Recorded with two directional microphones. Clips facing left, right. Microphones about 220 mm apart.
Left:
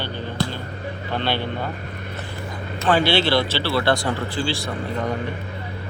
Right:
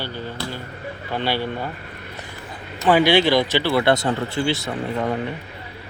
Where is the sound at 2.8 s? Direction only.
15° right (ahead or behind).